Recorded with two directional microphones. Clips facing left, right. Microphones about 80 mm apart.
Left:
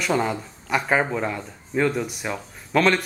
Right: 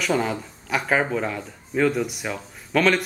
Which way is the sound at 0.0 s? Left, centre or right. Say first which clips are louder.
Even; centre.